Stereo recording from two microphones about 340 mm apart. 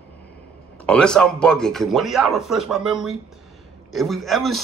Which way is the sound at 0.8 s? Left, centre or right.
Centre.